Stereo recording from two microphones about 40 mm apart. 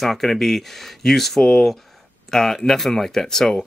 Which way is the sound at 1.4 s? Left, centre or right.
Left.